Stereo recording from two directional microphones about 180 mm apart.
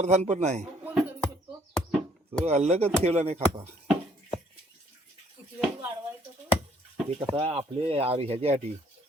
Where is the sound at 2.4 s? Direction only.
35° right (ahead or behind).